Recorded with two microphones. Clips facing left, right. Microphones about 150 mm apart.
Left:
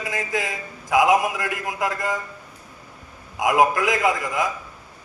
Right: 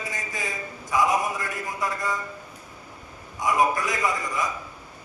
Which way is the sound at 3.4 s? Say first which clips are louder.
Left 4 dB; 90° left.